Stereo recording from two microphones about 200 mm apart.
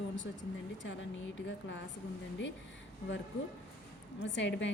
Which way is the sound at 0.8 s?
65° left (ahead or behind).